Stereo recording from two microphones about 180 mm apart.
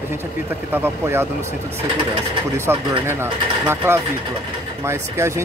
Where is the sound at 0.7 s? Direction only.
15° right (ahead or behind).